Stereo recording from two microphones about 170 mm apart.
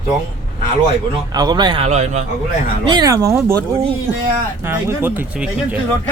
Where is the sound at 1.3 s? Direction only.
25° right (ahead or behind); by 2.2 s 40° right (ahead or behind).